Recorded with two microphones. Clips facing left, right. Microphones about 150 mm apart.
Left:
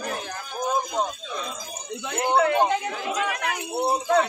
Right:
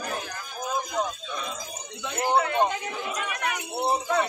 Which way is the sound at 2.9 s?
90° left.